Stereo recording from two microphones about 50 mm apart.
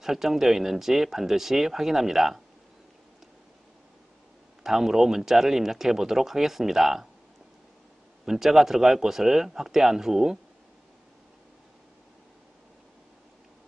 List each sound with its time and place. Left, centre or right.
0.0 s speech: centre
4.6 s speech: centre
8.3 s speech: centre